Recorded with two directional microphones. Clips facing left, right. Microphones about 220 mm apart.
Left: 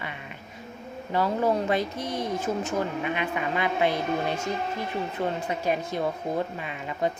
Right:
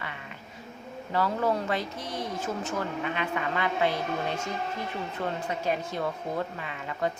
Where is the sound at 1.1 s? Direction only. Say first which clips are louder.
Left 3 dB; 15° left (ahead or behind).